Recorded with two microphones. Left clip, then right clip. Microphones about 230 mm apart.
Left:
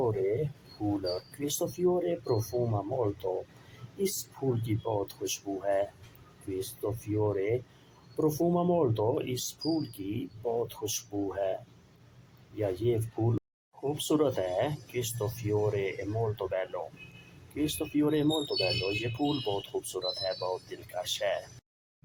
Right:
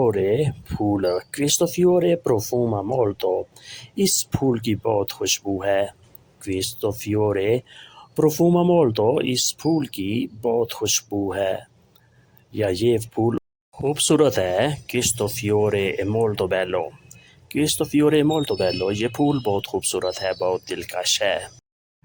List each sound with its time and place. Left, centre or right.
0.0 s speech: right
7.2 s speech: right
12.5 s speech: right